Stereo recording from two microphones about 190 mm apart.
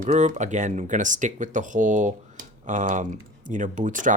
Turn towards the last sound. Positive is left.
turn(degrees=-45)  # may be behind; listen again after turning